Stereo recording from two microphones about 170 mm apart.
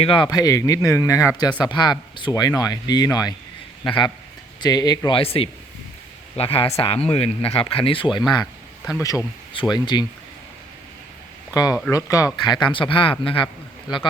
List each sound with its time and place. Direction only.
0.0 s speech: 30° left (ahead or behind)
8.9 s speech: 20° left (ahead or behind)
11.9 s speech: 20° left (ahead or behind)